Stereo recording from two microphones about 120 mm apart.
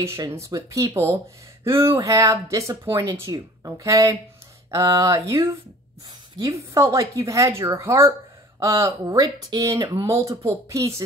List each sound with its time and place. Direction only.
0.0 s speech: 20° right (ahead or behind)
6.4 s speech: 25° right (ahead or behind)